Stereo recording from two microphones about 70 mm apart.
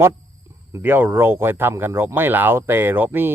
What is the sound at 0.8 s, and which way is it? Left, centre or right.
Speech, right.